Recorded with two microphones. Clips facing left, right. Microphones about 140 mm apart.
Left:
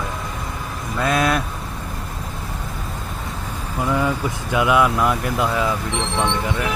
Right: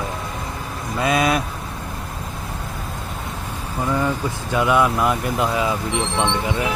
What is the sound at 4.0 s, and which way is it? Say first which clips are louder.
Speech: left 1 dB; 5° left (ahead or behind).